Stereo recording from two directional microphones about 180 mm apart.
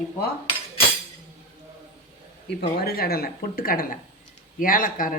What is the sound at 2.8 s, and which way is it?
Speech, 60° left (ahead or behind).